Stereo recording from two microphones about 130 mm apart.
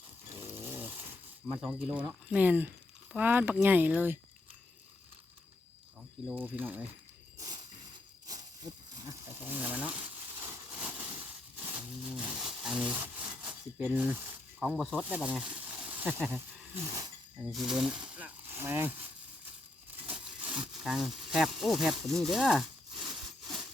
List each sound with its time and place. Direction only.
0.5 s snoring: 15° right (ahead or behind)
1.5 s speech: 10° right (ahead or behind)
6.2 s speech: 15° right (ahead or behind)
7.3 s mechanisms: 30° right (ahead or behind)
8.3 s a sound: 30° right (ahead or behind); by 11.2 s 10° right (ahead or behind)
11.6 s wood: 10° right (ahead or behind)
14.6 s speech: centre (ahead or behind)
15.0 s speech: 10° right (ahead or behind)
16.8 s music: 25° right (ahead or behind)
17.5 s speech: 5° right (ahead or behind); by 18.9 s 20° right (ahead or behind)
20.1 s wood: 10° right (ahead or behind)
20.6 s a sound: 5° right (ahead or behind)